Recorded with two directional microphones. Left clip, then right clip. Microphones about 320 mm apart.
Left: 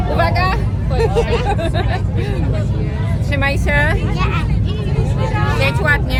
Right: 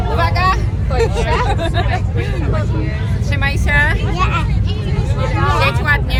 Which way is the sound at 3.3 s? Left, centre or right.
Centre.